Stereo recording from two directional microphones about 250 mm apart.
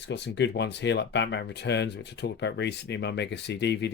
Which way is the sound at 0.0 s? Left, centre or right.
Left.